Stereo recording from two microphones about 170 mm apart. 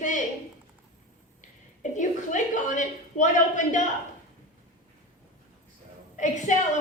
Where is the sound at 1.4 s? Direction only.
45° left (ahead or behind).